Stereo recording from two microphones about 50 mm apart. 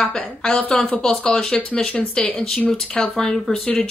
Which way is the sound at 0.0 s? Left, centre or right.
Centre.